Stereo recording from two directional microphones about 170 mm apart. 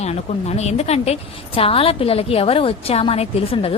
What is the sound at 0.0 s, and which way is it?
A woman's voice, 40° left (ahead or behind).